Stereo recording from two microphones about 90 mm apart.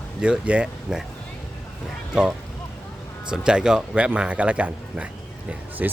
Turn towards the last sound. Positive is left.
turn(degrees=-20)  # may be behind; listen again after turning